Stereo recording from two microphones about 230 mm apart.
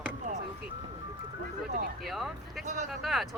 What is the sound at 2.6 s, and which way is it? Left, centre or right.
Speech, right.